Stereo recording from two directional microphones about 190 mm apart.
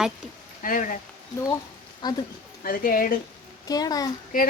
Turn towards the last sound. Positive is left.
turn(degrees=45)  # may be behind; listen again after turning